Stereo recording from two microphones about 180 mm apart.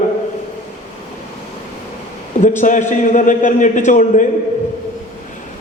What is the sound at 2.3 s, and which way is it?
A man's voice, 45° left (ahead or behind).